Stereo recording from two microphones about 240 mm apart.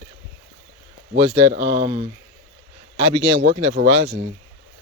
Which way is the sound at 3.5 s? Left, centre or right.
Right.